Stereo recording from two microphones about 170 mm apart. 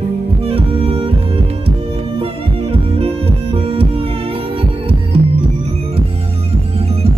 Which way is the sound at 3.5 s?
35° right (ahead or behind).